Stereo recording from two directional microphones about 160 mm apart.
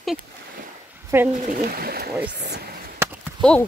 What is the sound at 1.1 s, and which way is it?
Speech, 20° right (ahead or behind).